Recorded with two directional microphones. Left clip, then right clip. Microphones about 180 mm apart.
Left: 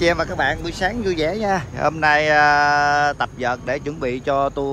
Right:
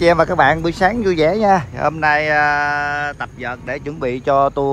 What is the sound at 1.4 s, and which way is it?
Speech, 5° right (ahead or behind).